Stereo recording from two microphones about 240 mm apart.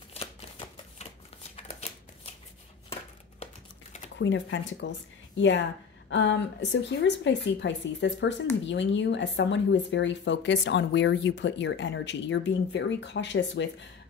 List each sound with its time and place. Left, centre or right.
0.1 s shuffling cards: left
4.2 s a woman's voice: left
6.0 s a woman's voice: left